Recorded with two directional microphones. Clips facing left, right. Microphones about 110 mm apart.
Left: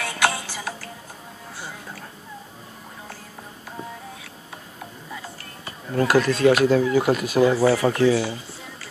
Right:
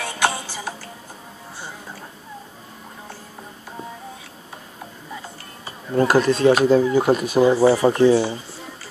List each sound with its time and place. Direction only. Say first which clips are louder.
0.0 s music: right 1 dB; 25° right (ahead or behind)
5.7 s speech: right 3 dB; 30° right (ahead or behind)